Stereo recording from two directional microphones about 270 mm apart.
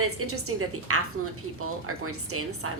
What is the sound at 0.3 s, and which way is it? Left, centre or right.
A woman's voice, right.